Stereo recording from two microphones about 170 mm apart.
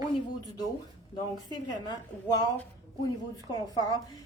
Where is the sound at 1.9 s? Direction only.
25° left (ahead or behind).